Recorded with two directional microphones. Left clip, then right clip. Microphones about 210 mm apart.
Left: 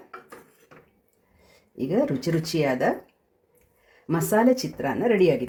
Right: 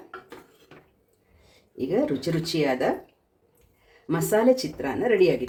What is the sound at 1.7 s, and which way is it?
Speech, 30° left (ahead or behind).